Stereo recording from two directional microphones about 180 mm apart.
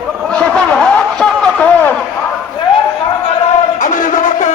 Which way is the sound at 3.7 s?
45° left (ahead or behind).